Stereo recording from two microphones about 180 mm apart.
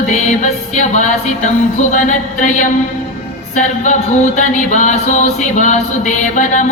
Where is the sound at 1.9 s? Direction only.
45° left (ahead or behind).